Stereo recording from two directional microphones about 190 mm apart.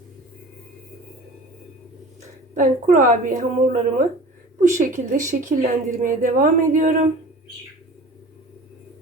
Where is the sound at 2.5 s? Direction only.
45° right (ahead or behind).